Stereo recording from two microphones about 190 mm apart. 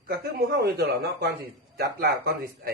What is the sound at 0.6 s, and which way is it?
A man's voice, 55° right (ahead or behind).